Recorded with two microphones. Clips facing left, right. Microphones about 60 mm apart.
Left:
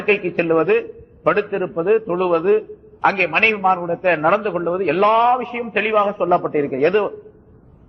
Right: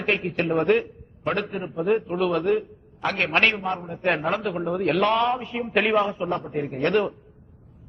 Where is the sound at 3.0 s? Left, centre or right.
Left.